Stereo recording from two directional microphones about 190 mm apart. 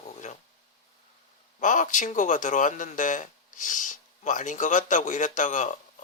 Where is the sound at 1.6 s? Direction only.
40° left (ahead or behind).